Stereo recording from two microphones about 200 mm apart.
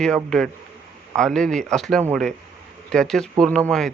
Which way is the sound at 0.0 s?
5° left (ahead or behind).